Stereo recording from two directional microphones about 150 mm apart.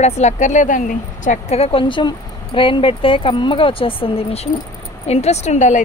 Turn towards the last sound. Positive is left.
turn(degrees=55)  # may be behind; listen again after turning